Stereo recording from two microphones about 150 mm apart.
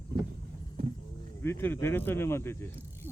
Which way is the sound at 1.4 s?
15° left (ahead or behind).